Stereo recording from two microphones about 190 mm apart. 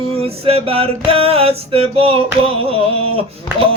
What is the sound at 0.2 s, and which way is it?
Male singing, 30° right (ahead or behind).